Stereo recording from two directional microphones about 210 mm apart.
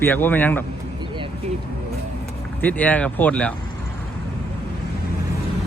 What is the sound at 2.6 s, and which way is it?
Speech, 10° left (ahead or behind).